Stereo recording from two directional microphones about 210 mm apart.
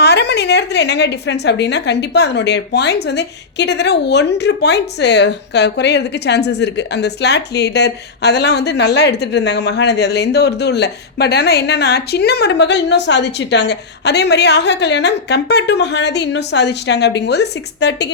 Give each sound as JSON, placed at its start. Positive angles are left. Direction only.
{"t": 0.0, "sound": "a woman's voice", "side_deg": 50}